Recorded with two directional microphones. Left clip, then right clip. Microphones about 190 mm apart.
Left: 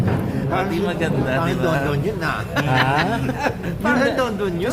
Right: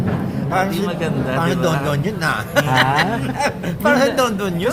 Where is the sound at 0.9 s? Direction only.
5° left (ahead or behind).